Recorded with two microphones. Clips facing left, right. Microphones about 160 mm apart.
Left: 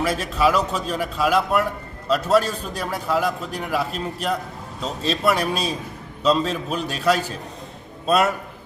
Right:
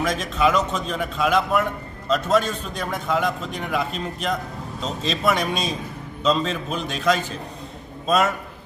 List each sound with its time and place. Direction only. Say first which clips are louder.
0.0 s a man's voice: left 1 dB; 5° left (ahead or behind)